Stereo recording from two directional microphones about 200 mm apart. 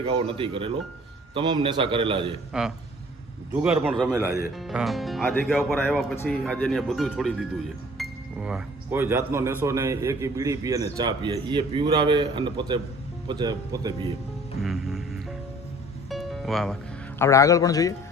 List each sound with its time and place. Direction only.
0.0 s a man's voice: 25° right (ahead or behind)
2.5 s speech: 5° right (ahead or behind)
4.5 s a man's voice: centre (ahead or behind); by 14.1 s 20° right (ahead or behind)
14.6 s music: centre (ahead or behind)
16.0 s music: centre (ahead or behind)
17.2 s speech: 15° left (ahead or behind)